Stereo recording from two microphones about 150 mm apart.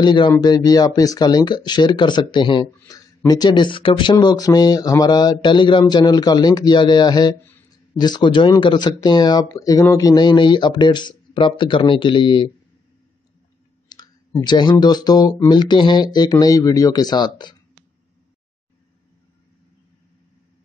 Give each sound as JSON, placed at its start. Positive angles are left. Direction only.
{"t": 0.0, "sound": "speech", "side_deg": 30}
{"t": 13.8, "sound": "speech", "side_deg": 30}